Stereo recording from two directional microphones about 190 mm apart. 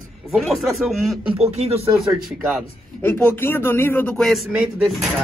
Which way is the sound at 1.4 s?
35° right (ahead or behind).